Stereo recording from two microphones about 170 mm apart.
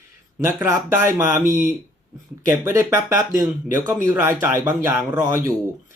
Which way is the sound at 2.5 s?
15° right (ahead or behind).